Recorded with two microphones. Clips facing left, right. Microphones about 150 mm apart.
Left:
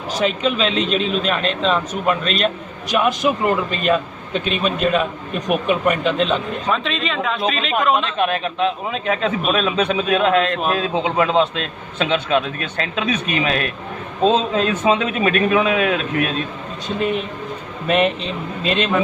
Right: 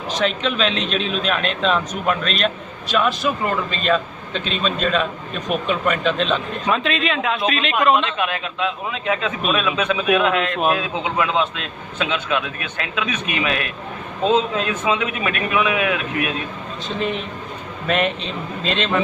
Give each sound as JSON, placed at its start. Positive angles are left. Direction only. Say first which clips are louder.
{"t": 0.1, "sound": "speech", "louder": "left 2 dB", "side_deg": 10}
{"t": 2.9, "sound": "a man's voice", "louder": "left 2 dB", "side_deg": 15}
{"t": 8.2, "sound": "a man's voice", "louder": "left 4 dB", "side_deg": 35}
{"t": 17.8, "sound": "a man's voice", "louder": "left 3 dB", "side_deg": 5}